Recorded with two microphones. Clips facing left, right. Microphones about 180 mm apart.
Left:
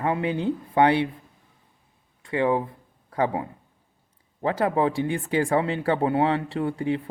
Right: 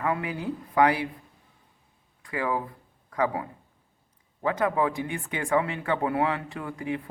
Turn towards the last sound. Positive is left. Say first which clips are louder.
# left 6 dB
turn(degrees=30)  # may be behind; listen again after turning